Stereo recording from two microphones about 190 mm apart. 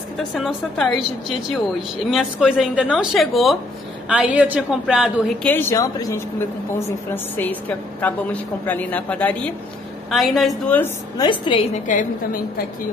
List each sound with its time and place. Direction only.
0.3 s a woman's voice: centre (ahead or behind)
5.4 s a woman's voice: 10° left (ahead or behind)
7.3 s a woman's voice: 10° left (ahead or behind)
11.1 s a woman's voice: 25° left (ahead or behind)
11.7 s a woman's voice: 40° left (ahead or behind)